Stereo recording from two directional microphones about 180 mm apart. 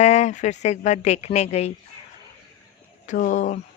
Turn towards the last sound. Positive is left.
turn(degrees=40)  # may be behind; listen again after turning